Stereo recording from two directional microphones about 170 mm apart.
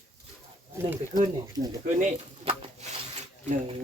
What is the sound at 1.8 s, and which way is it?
Speech, 50° right (ahead or behind).